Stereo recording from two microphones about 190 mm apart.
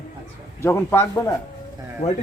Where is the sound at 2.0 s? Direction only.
35° left (ahead or behind).